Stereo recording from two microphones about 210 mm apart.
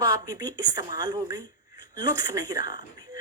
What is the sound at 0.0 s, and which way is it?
A woman's voice, 15° right (ahead or behind).